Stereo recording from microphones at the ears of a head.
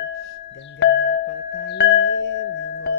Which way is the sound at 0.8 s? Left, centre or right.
Left.